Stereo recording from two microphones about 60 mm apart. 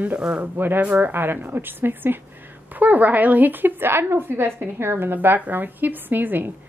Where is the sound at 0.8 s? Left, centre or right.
Right.